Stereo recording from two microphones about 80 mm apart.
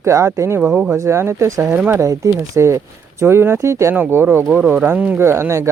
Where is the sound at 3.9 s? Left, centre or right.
Right.